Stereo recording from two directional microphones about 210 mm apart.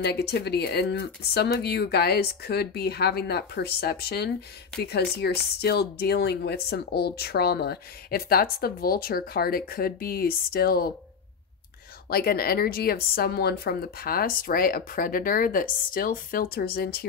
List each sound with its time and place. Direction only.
0.0 s speech: 50° left (ahead or behind)
12.1 s speech: 45° left (ahead or behind)